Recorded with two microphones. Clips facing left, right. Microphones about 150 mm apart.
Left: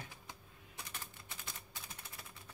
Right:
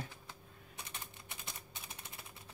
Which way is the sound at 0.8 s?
20° right (ahead or behind).